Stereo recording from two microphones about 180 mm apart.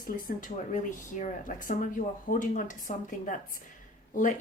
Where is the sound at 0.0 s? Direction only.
50° left (ahead or behind).